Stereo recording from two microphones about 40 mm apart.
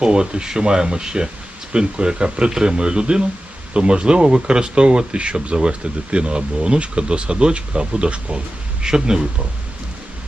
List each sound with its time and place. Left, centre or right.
0.0 s speech: right